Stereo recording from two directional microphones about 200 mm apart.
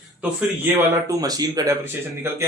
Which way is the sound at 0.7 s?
20° right (ahead or behind).